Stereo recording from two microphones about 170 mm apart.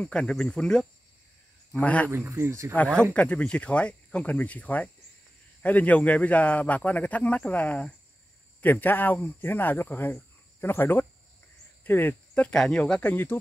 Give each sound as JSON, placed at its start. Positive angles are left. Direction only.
{"t": 0.0, "sound": "a man's voice", "side_deg": 5}
{"t": 2.0, "sound": "speech", "side_deg": -15}
{"t": 2.7, "sound": "a man's voice", "side_deg": 5}